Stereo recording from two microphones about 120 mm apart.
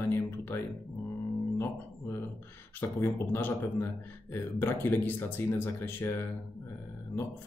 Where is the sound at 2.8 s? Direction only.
20° left (ahead or behind).